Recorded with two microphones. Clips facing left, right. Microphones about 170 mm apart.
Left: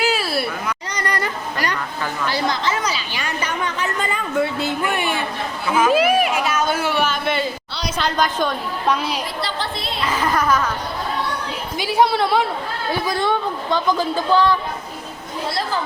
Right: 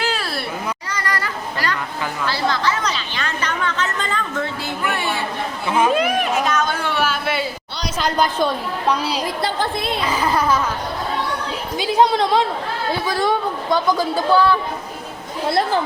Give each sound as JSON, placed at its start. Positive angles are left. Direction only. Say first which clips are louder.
{"t": 0.0, "sound": "a sound", "louder": "left 3 dB", "side_deg": 5}
{"t": 0.9, "sound": "children playing", "louder": "left 3 dB", "side_deg": 20}
{"t": 2.2, "sound": "a sound", "louder": "right 1 dB", "side_deg": 15}
{"t": 5.6, "sound": "speech", "louder": "even", "side_deg": -30}
{"t": 5.9, "sound": "a sound", "louder": "left 2 dB", "side_deg": 5}
{"t": 7.0, "sound": "a sound", "louder": "even", "side_deg": -5}
{"t": 7.9, "sound": "a woman's voice", "louder": "right 1 dB", "side_deg": -10}
{"t": 9.4, "sound": "a woman's voice", "louder": "right 4 dB", "side_deg": -50}
{"t": 10.1, "sound": "speech", "louder": "even", "side_deg": -10}
{"t": 12.1, "sound": "speech", "louder": "right 1 dB", "side_deg": 10}
{"t": 13.2, "sound": "speech", "louder": "right 1 dB", "side_deg": -10}
{"t": 15.4, "sound": "speech", "louder": "right 6 dB", "side_deg": -55}